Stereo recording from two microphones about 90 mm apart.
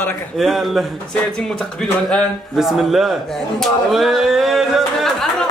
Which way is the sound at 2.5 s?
Centre (ahead or behind).